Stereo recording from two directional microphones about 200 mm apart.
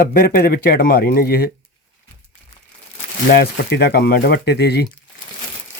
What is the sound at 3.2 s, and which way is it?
Speech, 50° left (ahead or behind).